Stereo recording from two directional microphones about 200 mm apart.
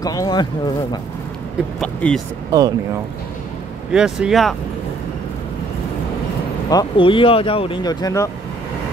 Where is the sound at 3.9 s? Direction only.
5° right (ahead or behind).